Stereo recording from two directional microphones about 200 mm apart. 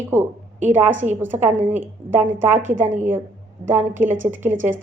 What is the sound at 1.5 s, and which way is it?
Speech, 35° right (ahead or behind).